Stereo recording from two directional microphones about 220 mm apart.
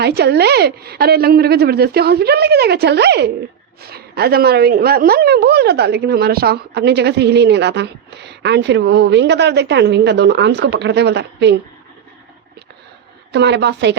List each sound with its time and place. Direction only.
0.0 s a woman's voice: 50° right (ahead or behind)
13.3 s a woman's voice: 50° right (ahead or behind)